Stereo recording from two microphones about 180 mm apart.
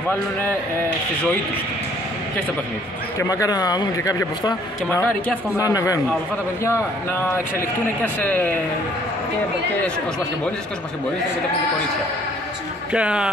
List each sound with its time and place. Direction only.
3.2 s speech: 20° left (ahead or behind)
12.9 s speech: 5° right (ahead or behind)